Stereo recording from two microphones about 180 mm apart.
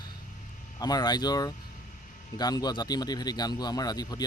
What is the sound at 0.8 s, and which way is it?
Speech, 20° left (ahead or behind).